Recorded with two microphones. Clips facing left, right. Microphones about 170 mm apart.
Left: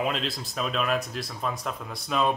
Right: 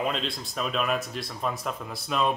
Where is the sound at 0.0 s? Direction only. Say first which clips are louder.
Left 1 dB; centre (ahead or behind).